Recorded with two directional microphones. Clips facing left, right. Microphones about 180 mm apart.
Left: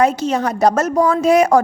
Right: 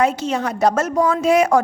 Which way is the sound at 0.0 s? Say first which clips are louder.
Left 3 dB; 40° left (ahead or behind).